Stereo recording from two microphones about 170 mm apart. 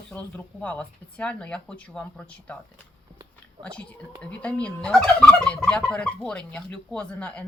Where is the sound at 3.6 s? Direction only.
5° left (ahead or behind).